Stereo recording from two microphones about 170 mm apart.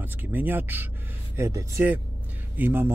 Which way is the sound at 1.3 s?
15° right (ahead or behind).